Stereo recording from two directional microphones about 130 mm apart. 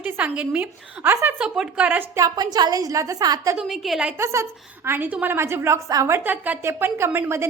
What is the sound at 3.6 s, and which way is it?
Speech, 5° right (ahead or behind).